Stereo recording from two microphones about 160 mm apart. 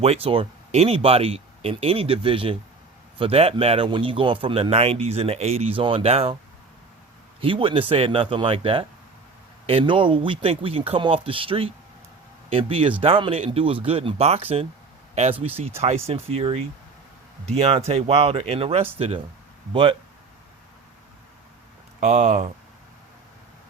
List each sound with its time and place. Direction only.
0.0 s speech: 40° right (ahead or behind)
7.4 s speech: 35° right (ahead or behind)
22.0 s speech: 50° right (ahead or behind)